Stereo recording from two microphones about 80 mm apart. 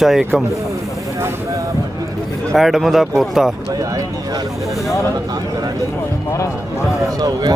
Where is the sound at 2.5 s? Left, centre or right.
Centre.